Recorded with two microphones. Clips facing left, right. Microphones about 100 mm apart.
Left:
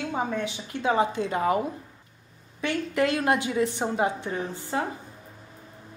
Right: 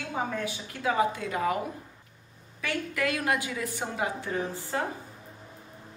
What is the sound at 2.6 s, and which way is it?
A woman's voice, 30° left (ahead or behind).